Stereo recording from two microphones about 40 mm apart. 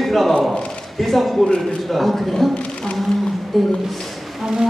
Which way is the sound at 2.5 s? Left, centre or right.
Left.